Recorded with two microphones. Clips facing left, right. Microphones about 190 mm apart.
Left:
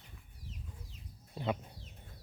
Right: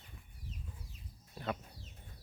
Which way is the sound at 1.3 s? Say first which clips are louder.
Left 4 dB; 15° left (ahead or behind).